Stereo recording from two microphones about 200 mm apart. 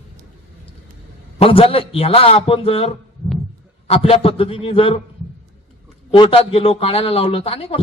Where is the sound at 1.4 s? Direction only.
25° left (ahead or behind).